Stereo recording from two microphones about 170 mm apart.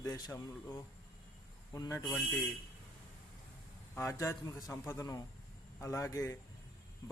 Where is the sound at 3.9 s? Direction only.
15° left (ahead or behind).